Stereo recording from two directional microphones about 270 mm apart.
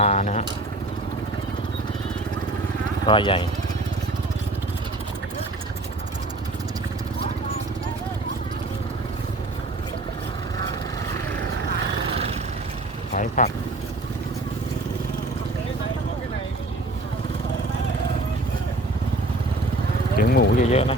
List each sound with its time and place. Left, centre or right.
0.0 s speech: left
3.1 s speech: centre
13.1 s vehicle: left
20.1 s vehicle: left